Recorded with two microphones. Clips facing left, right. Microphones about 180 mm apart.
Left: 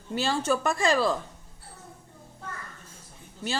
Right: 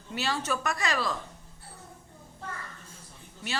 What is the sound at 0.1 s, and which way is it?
A woman's voice, 30° left (ahead or behind).